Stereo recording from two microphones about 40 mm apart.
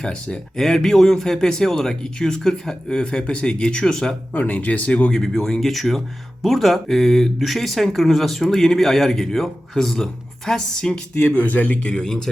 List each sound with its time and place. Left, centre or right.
0.0 s speech: left
4.4 s speech: left
5.1 s speech: centre
11.4 s speech: left
12.0 s speech: centre